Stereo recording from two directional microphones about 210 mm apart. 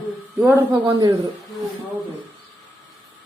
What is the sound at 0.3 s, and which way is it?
Speech, 10° right (ahead or behind).